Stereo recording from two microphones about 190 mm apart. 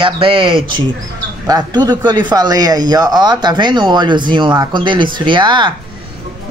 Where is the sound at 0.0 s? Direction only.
25° right (ahead or behind).